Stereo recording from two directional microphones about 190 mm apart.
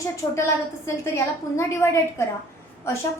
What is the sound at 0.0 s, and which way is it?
A woman's voice, 15° left (ahead or behind).